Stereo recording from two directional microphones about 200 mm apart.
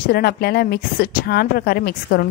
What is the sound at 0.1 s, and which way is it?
Speech, 50° left (ahead or behind).